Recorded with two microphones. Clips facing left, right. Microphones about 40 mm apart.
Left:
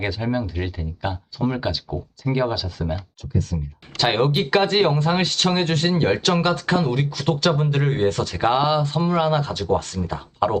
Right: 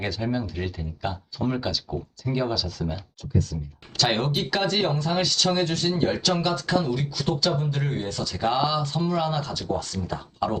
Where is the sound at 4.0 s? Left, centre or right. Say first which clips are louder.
Left 5 dB; left.